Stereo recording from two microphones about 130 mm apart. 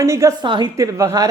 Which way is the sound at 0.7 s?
25° right (ahead or behind).